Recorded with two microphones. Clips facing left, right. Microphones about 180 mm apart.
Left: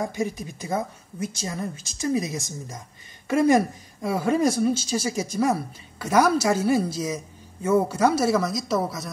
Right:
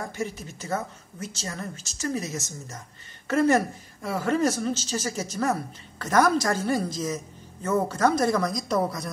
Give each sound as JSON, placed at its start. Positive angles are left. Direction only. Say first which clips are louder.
{"t": 0.0, "sound": "a woman's voice", "louder": "left 5 dB", "side_deg": 15}